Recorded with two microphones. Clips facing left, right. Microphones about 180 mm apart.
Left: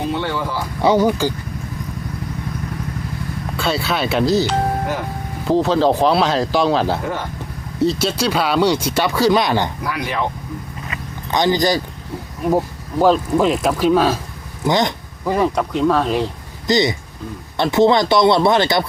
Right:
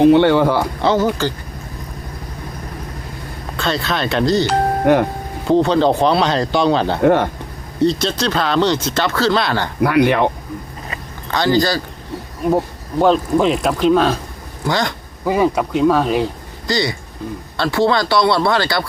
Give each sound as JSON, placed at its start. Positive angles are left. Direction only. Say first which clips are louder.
{"t": 0.0, "sound": "speech", "louder": "right 12 dB", "side_deg": -65}
{"t": 0.8, "sound": "speech", "louder": "left 6 dB", "side_deg": 10}
{"t": 3.6, "sound": "speech", "louder": "even", "side_deg": 10}
{"t": 4.9, "sound": "speech", "louder": "right 11 dB", "side_deg": -65}
{"t": 5.5, "sound": "speech", "louder": "right 2 dB", "side_deg": 0}
{"t": 7.0, "sound": "speech", "louder": "right 11 dB", "side_deg": -65}
{"t": 7.8, "sound": "speech", "louder": "right 1 dB", "side_deg": 5}
{"t": 9.8, "sound": "speech", "louder": "right 9 dB", "side_deg": -65}
{"t": 11.3, "sound": "speech", "louder": "even", "side_deg": 15}
{"t": 12.5, "sound": "speech", "louder": "right 1 dB", "side_deg": 0}
{"t": 14.6, "sound": "speech", "louder": "left 2 dB", "side_deg": 20}
{"t": 15.2, "sound": "speech", "louder": "right 2 dB", "side_deg": -5}
{"t": 16.6, "sound": "speech", "louder": "left 3 dB", "side_deg": 20}